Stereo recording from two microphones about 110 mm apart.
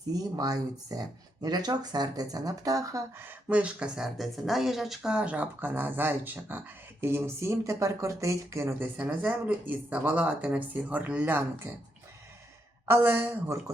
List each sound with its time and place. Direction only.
0.1 s speech: 35° right (ahead or behind)
3.2 s speech: 10° right (ahead or behind)
12.8 s speech: 20° right (ahead or behind)